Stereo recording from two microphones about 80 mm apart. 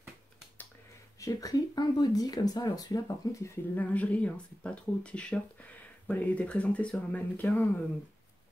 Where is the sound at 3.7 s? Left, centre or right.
Centre.